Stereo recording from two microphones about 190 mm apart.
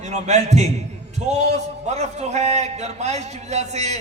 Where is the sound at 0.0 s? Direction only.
35° right (ahead or behind).